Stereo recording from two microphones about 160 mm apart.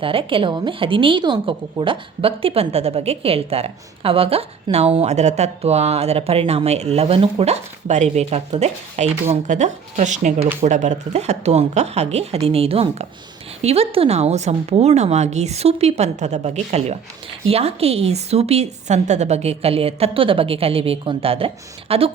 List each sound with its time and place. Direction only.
0.0 s a woman's voice: 35° right (ahead or behind)